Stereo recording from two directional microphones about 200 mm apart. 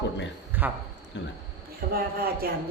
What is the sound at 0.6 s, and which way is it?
Speech, 10° right (ahead or behind).